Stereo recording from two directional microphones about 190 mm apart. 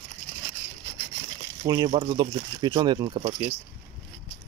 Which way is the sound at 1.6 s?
20° right (ahead or behind).